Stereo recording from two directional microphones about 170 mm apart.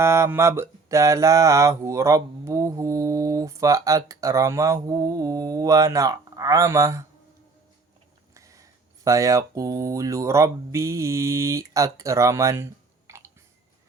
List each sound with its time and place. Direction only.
0.0 s mantra: 15° right (ahead or behind)
8.3 s a sound: 20° right (ahead or behind)
9.0 s speech: 20° right (ahead or behind)
13.1 s chewing: 15° right (ahead or behind)